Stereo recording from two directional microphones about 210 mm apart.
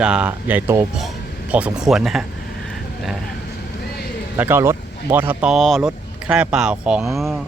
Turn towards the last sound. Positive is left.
turn(degrees=0)  # may be behind; listen again after turning